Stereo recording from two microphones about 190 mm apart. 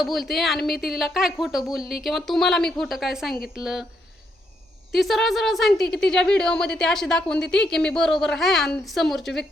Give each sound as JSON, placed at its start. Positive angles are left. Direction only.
{"t": 0.0, "sound": "speech", "side_deg": 0}
{"t": 4.9, "sound": "speech", "side_deg": 0}